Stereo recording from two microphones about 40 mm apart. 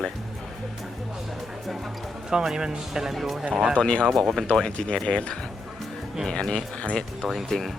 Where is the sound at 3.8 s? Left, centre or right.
Left.